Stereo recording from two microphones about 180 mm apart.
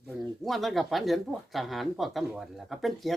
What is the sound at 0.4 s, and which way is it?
Speech, centre (ahead or behind).